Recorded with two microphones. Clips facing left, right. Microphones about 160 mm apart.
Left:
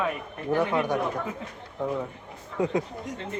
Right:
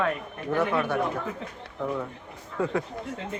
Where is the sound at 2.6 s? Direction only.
15° left (ahead or behind).